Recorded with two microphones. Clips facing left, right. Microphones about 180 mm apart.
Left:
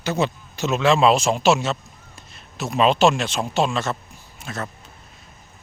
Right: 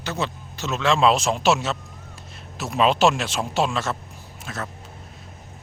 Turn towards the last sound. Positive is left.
turn(degrees=0)  # may be behind; listen again after turning